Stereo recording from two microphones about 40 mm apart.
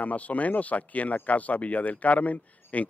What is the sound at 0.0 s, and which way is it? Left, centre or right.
Speech, left.